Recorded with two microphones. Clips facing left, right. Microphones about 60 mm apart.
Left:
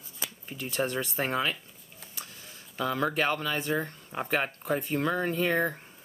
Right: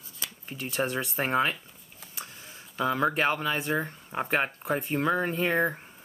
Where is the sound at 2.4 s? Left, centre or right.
Centre.